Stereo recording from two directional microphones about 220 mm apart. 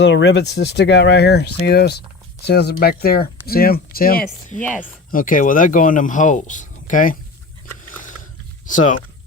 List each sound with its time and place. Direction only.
0.0 s speech: 55° left (ahead or behind); by 7.2 s 35° left (ahead or behind)
8.6 s speech: 35° left (ahead or behind)